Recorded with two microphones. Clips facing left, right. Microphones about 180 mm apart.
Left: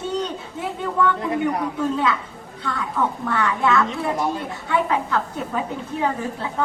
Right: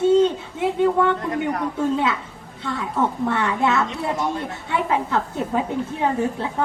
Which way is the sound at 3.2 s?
25° right (ahead or behind).